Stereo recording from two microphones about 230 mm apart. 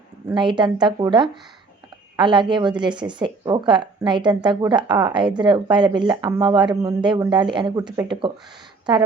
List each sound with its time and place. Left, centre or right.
0.3 s speech: centre